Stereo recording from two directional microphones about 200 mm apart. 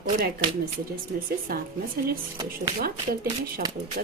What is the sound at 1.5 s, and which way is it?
Speech, 50° right (ahead or behind).